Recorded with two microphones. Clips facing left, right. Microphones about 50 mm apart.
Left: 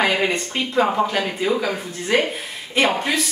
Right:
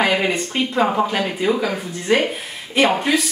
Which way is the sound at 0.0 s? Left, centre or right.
Centre.